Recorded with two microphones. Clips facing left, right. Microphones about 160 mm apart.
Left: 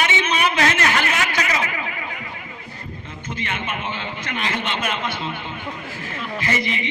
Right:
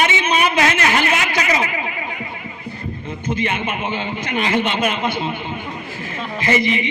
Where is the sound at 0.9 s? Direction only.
20° right (ahead or behind).